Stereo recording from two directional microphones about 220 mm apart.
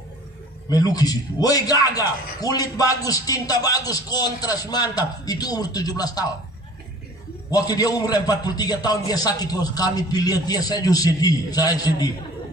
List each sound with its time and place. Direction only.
0.7 s a man's voice: 15° left (ahead or behind)
7.5 s a man's voice: 15° left (ahead or behind)